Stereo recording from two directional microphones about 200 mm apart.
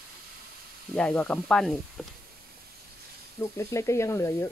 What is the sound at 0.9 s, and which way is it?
Sizzle, 5° left (ahead or behind).